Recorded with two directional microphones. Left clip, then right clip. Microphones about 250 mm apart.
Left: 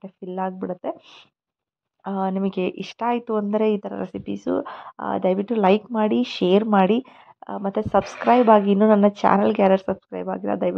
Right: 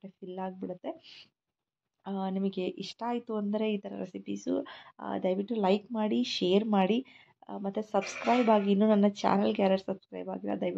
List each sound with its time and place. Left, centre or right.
0.0 s speech: centre
2.0 s speech: centre